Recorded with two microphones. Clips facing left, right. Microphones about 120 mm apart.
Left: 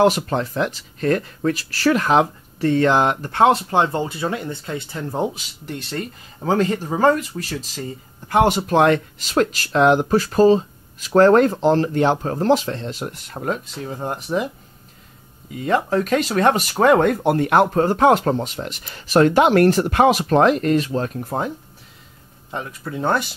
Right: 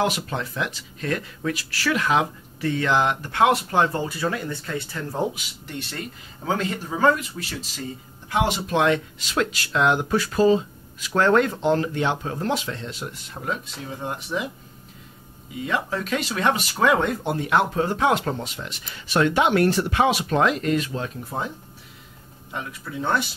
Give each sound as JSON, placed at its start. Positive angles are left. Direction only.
{"t": 0.0, "sound": "speech", "side_deg": 40}
{"t": 5.4, "sound": "speech", "side_deg": 40}
{"t": 15.6, "sound": "speech", "side_deg": 45}
{"t": 21.1, "sound": "speech", "side_deg": 50}
{"t": 22.5, "sound": "speech", "side_deg": 35}